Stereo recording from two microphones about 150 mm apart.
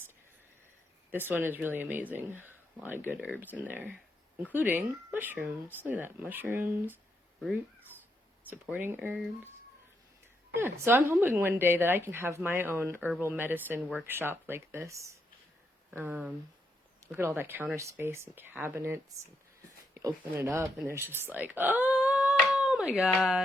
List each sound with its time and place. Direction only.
1.1 s speech: 15° right (ahead or behind)
8.6 s speech: 10° right (ahead or behind)
10.5 s speech: 15° right (ahead or behind)